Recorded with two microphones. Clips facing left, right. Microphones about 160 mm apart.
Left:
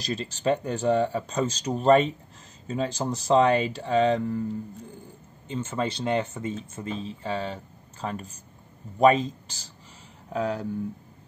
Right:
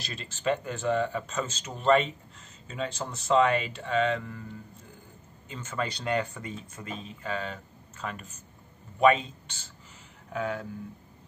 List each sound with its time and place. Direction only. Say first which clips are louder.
0.0 s speech: left 4 dB; 35° left (ahead or behind)
5.5 s speech: left 5 dB; 25° left (ahead or behind)